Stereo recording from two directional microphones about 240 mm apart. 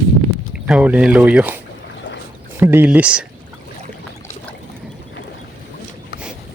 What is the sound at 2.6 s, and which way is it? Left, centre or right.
Speech, centre.